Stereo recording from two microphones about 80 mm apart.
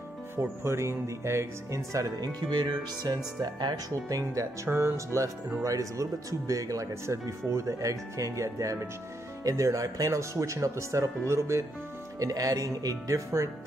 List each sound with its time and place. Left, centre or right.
0.4 s speech: right
4.6 s speech: right